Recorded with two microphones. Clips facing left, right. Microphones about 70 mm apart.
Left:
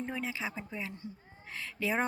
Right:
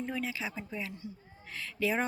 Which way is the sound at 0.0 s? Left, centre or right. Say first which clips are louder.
Right 1 dB; left.